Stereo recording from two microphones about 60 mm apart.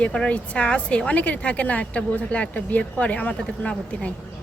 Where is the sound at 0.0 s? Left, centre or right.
Centre.